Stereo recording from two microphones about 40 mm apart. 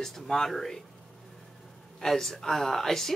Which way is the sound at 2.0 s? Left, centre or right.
Centre.